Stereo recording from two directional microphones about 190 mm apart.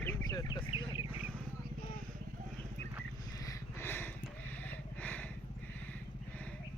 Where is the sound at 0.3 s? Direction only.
20° left (ahead or behind).